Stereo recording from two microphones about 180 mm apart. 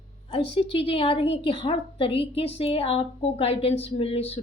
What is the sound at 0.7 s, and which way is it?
A woman's voice, 30° left (ahead or behind).